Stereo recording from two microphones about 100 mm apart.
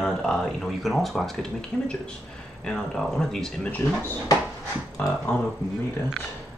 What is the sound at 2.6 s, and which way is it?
Speech, 5° left (ahead or behind).